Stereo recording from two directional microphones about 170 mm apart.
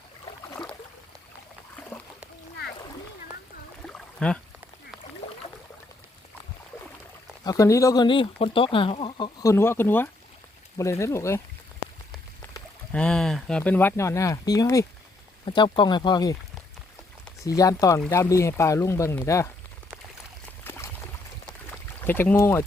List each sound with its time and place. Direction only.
0.3 s boat: 25° left (ahead or behind)
3.8 s a sound: 5° left (ahead or behind)
7.4 s speech: 20° left (ahead or behind)
12.9 s speech: 5° left (ahead or behind); by 16.3 s 25° left (ahead or behind)
17.6 s speech: 20° left (ahead or behind)
20.7 s a sound: 15° left (ahead or behind)
22.0 s speech: 10° left (ahead or behind)